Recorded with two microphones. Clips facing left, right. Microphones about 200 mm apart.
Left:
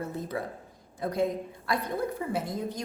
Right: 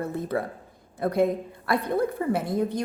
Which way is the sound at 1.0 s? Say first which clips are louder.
Right 5 dB; 60° right (ahead or behind).